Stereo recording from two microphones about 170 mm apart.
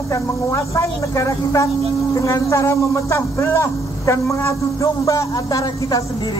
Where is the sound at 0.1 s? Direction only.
15° left (ahead or behind).